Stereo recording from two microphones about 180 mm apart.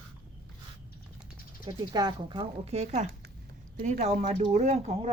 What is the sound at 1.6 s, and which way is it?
Speech, 25° right (ahead or behind).